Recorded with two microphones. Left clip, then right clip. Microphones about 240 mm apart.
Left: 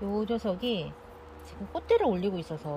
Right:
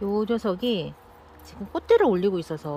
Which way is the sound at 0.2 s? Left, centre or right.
Centre.